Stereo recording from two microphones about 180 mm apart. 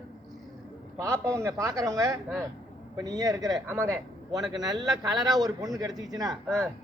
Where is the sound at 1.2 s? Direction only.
15° right (ahead or behind).